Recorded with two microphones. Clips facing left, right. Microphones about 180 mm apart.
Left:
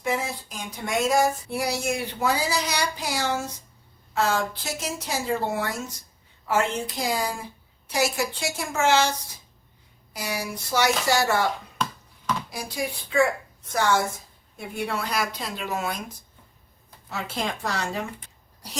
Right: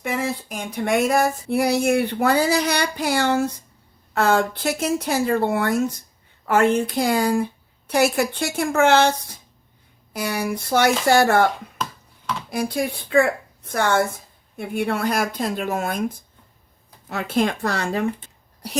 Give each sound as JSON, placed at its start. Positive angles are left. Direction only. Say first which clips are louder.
{"t": 0.0, "sound": "a sound", "louder": "right 3 dB", "side_deg": -65}
{"t": 4.1, "sound": "a woman's voice", "louder": "right 5 dB", "side_deg": -60}
{"t": 12.5, "sound": "a woman's voice", "louder": "right 7 dB", "side_deg": -55}